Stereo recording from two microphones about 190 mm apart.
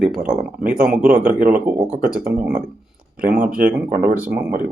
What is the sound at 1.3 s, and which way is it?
Speech, 50° right (ahead or behind).